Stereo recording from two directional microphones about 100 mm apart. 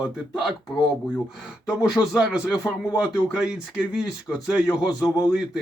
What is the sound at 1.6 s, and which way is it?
Speech, 10° right (ahead or behind).